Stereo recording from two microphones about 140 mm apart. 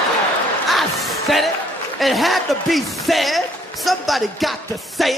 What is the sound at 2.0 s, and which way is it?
Speech, centre (ahead or behind).